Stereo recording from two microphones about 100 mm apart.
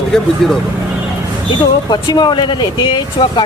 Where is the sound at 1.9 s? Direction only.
45° left (ahead or behind).